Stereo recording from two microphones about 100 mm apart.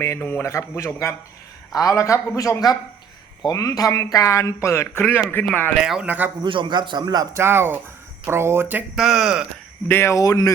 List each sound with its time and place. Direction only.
0.0 s speech: 25° left (ahead or behind)
5.8 s speech: 10° right (ahead or behind)
6.4 s a man's voice: 55° right (ahead or behind)
7.3 s speech: 20° right (ahead or behind)
9.0 s speech: centre (ahead or behind)
9.9 s speech: 25° left (ahead or behind)
10.2 s speech: 35° left (ahead or behind)